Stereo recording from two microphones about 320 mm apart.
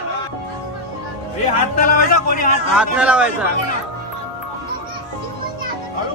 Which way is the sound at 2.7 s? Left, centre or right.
Centre.